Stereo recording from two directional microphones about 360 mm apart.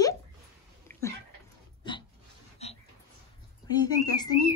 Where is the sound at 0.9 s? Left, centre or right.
Centre.